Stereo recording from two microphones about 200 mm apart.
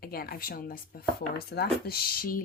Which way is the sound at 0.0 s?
50° left (ahead or behind).